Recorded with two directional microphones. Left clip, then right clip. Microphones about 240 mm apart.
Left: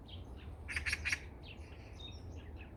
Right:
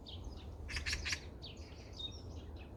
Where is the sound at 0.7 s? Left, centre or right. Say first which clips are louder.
Left 3 dB; centre.